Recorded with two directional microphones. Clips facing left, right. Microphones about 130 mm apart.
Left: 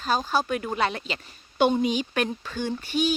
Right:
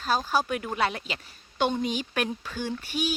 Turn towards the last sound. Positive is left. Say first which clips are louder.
# left 4 dB
turn(degrees=-10)  # may be behind; listen again after turning